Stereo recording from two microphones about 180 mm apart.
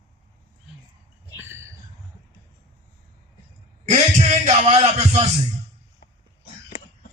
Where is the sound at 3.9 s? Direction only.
40° right (ahead or behind).